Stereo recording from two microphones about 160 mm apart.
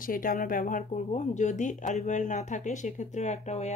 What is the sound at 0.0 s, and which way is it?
Speech, 60° left (ahead or behind).